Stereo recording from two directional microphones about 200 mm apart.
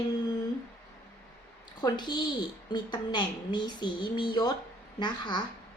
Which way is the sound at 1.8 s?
20° left (ahead or behind).